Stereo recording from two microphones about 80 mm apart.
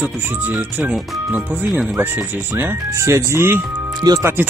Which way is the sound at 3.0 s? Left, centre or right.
Right.